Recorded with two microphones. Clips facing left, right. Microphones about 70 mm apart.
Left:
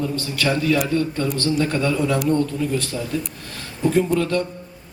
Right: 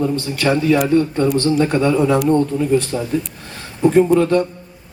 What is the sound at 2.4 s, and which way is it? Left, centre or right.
A man's voice, right.